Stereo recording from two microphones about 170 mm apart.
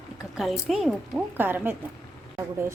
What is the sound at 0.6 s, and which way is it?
Speech, centre (ahead or behind).